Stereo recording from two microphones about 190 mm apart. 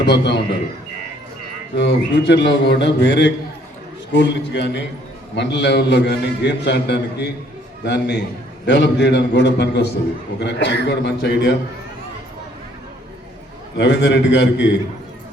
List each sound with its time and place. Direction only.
0.0 s a man's voice: 65° left (ahead or behind)
1.7 s a man's voice: 65° left (ahead or behind)
13.7 s a man's voice: 65° left (ahead or behind)